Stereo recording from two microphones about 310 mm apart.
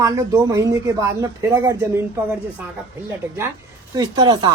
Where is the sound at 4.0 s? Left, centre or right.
Centre.